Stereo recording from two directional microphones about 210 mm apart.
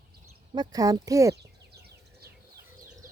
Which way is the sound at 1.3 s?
50° right (ahead or behind).